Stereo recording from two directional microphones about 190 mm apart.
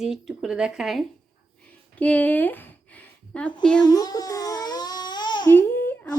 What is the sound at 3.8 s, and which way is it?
Crying, 20° left (ahead or behind).